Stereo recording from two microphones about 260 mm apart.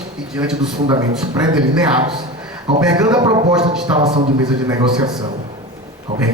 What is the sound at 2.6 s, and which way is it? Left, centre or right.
A man's voice, centre.